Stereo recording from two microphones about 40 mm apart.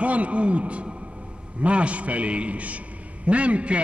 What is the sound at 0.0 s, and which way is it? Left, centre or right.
A man's voice, right.